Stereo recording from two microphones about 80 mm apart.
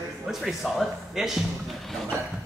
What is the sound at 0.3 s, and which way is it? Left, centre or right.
A man's voice, centre.